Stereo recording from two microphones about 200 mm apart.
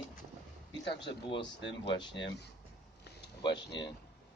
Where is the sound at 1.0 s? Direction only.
25° left (ahead or behind).